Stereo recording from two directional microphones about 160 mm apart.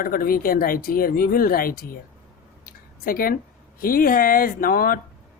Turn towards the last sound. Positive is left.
turn(degrees=65)  # may be behind; listen again after turning